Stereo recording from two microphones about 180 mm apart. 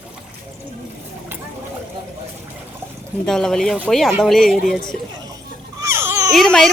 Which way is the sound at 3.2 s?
5° left (ahead or behind).